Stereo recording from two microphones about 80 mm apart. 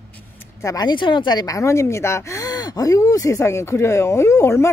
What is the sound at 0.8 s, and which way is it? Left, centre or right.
Speech, left.